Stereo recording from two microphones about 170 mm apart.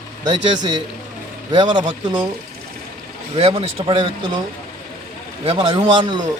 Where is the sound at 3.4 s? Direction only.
35° right (ahead or behind).